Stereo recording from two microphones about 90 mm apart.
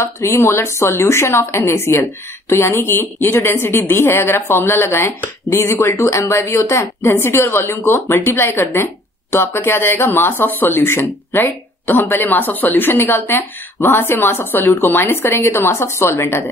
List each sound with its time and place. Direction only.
0.0 s a woman's voice: 30° left (ahead or behind)